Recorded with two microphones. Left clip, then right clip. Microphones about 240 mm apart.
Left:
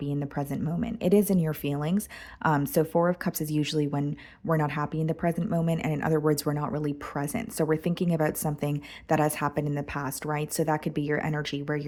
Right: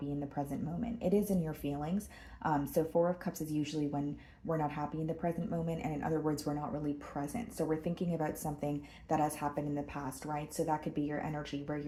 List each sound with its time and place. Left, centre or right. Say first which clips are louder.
0.2 s speech: left 6 dB; left